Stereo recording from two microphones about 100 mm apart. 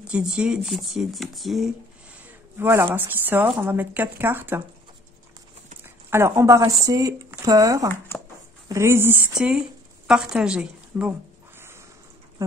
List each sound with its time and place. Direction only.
0.0 s speech: 10° right (ahead or behind)
2.5 s speech: 25° right (ahead or behind)
6.0 s speech: 25° right (ahead or behind)
10.0 s a woman's voice: 5° right (ahead or behind)
12.4 s dog: 30° right (ahead or behind)